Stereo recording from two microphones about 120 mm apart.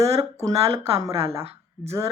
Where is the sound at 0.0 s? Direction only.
60° right (ahead or behind).